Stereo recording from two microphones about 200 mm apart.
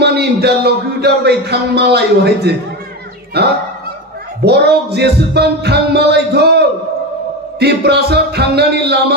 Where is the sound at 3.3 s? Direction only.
55° right (ahead or behind).